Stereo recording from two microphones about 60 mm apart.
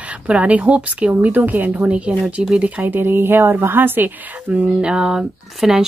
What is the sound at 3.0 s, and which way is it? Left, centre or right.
A woman's voice, right.